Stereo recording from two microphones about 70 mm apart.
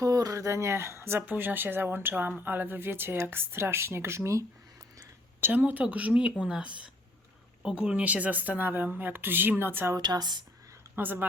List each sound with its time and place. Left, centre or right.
0.0 s speech: right
1.2 s speech: right
5.4 s speech: right
10.0 s speech: right
10.9 s speech: right